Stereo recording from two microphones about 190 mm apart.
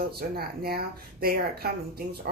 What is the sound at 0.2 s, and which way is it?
Speech, 55° right (ahead or behind).